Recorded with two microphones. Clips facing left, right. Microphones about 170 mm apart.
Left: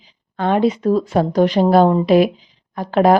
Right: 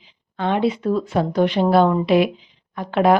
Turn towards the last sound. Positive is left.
turn(degrees=40)  # may be behind; listen again after turning